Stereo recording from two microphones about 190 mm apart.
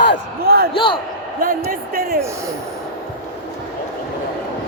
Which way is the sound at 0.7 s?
25° left (ahead or behind).